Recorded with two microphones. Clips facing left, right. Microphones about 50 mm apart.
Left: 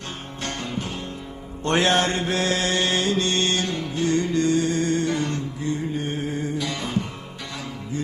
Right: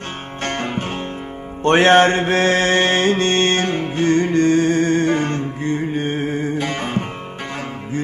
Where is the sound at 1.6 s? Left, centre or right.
Right.